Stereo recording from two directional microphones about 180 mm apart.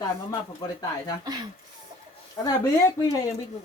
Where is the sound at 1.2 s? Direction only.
20° right (ahead or behind).